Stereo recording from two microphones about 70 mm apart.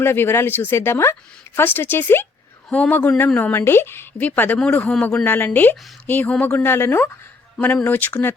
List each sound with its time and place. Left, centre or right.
0.0 s speech: left
2.6 s a man's voice: centre
2.9 s a woman's voice: left
3.5 s a woman's voice: left; by 5.2 s centre
5.2 s a woman's voice: left